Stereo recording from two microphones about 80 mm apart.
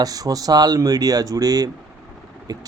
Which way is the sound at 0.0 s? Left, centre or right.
Right.